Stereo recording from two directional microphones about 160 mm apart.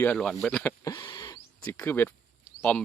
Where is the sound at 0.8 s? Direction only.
20° left (ahead or behind).